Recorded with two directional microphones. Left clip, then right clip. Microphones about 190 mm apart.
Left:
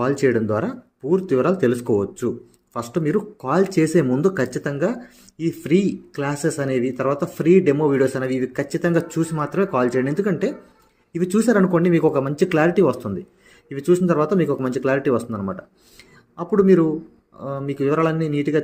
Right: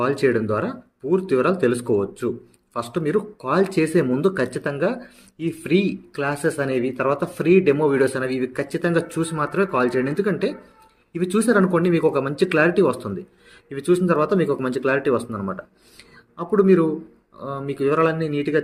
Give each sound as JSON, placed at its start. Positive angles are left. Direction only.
{"t": 0.0, "sound": "speech", "side_deg": 35}